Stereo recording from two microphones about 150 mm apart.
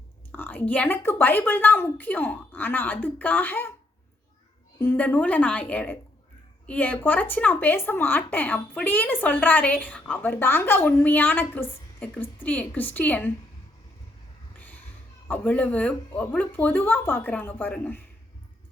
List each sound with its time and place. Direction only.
0.3 s speech: 10° left (ahead or behind)
4.8 s speech: 15° left (ahead or behind)
14.5 s children playing: 10° left (ahead or behind)
15.3 s speech: 10° left (ahead or behind)